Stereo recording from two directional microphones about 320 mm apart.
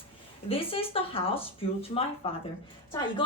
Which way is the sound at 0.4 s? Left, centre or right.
Centre.